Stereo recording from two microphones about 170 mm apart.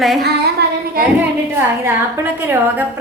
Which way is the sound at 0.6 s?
75° right (ahead or behind).